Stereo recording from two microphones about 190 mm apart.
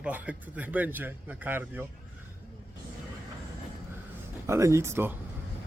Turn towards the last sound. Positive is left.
turn(degrees=-15)  # may be behind; listen again after turning